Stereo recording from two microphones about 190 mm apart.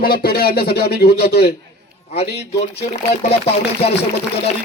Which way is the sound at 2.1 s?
35° left (ahead or behind).